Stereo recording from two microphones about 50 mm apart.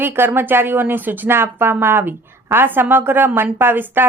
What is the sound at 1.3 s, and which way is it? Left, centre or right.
Speech, right.